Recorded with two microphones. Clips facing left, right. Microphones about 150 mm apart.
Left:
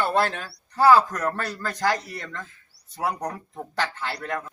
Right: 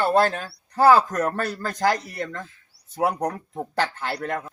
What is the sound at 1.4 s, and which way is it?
Speech, 50° right (ahead or behind).